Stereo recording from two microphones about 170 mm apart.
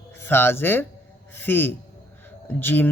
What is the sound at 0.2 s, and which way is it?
Speech, 15° left (ahead or behind).